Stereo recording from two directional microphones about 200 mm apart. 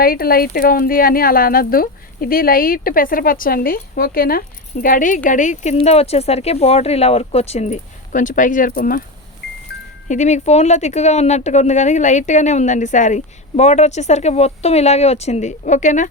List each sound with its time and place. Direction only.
0.0 s speech: 50° left (ahead or behind)
10.1 s speech: 35° left (ahead or behind)